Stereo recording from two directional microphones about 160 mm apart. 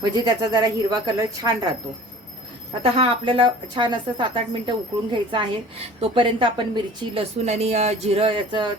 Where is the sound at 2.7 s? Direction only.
35° right (ahead or behind).